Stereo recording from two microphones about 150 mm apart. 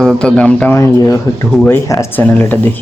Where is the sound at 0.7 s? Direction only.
20° left (ahead or behind).